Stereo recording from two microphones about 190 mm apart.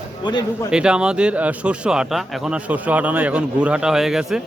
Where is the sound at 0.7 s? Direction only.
5° right (ahead or behind).